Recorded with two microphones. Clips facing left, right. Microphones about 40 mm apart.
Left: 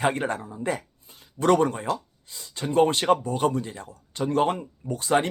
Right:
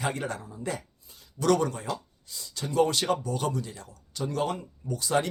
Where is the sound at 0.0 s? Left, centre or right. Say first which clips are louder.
Left 6 dB; left.